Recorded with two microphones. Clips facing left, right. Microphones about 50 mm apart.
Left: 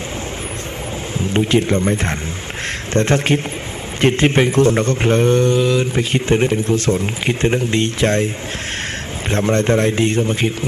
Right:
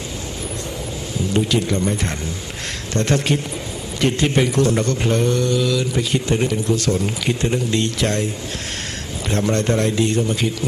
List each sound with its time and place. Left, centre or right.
1.2 s a man's voice: left
9.3 s a man's voice: left